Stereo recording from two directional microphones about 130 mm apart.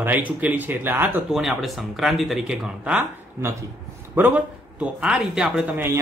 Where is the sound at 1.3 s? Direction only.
5° right (ahead or behind).